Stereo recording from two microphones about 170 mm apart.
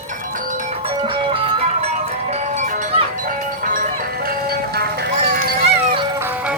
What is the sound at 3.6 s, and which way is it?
Music, 50° right (ahead or behind).